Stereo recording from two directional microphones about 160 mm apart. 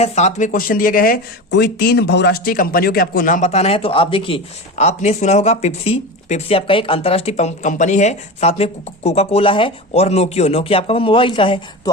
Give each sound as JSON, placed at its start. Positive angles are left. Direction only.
{"t": 0.0, "sound": "speech", "side_deg": 45}
{"t": 4.8, "sound": "speech", "side_deg": 45}